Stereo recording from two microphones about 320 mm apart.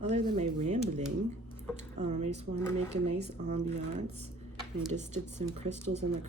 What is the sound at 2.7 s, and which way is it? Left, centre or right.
Speech, centre.